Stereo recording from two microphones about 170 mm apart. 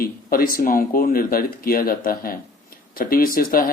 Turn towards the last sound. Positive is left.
turn(degrees=55)  # may be behind; listen again after turning